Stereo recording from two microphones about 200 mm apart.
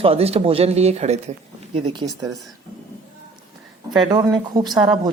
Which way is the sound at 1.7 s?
20° right (ahead or behind).